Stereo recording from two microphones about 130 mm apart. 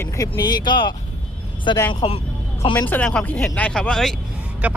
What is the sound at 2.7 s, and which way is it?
Speech, 10° left (ahead or behind).